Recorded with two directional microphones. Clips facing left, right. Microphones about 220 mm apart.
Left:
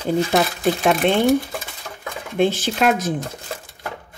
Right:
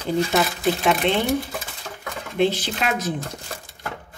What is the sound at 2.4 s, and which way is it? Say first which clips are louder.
Speech: left 4 dB; 50° left (ahead or behind).